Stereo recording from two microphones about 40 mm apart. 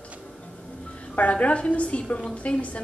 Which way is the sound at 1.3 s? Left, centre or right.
Left.